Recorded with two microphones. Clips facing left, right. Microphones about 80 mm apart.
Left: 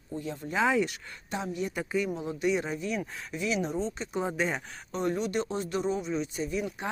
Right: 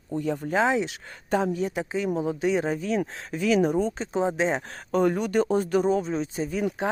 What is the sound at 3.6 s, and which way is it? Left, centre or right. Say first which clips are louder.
Speech: right 8 dB; right.